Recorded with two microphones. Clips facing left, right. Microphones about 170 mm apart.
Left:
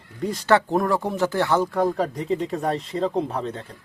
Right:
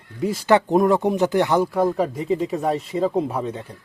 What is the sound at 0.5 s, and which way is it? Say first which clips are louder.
Speech: right 3 dB; 20° right (ahead or behind).